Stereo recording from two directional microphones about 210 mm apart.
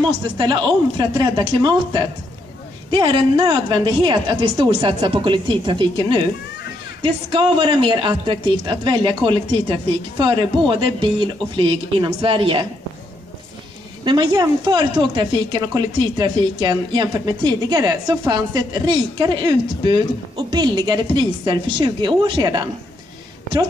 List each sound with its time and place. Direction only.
0.4 s speech: 20° right (ahead or behind)
14.0 s speech: 20° right (ahead or behind)